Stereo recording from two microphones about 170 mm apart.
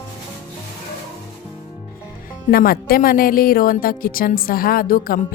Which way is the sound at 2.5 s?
60° left (ahead or behind).